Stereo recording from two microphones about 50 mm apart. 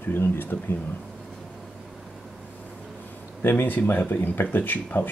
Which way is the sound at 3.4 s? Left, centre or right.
Left.